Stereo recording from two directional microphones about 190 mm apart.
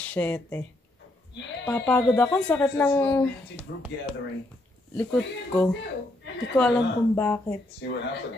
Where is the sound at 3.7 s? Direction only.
60° left (ahead or behind).